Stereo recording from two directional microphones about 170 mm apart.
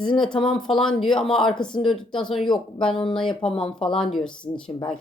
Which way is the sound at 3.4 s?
30° left (ahead or behind).